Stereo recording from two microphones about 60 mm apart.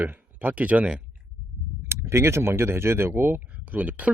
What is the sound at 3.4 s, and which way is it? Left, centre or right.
Speech, right.